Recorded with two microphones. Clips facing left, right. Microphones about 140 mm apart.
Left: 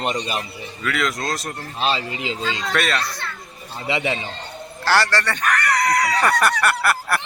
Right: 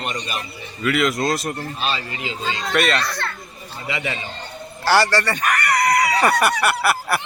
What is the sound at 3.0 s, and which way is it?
Speech, 90° right.